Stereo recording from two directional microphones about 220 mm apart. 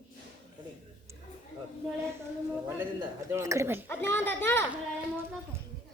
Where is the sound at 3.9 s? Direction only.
10° left (ahead or behind).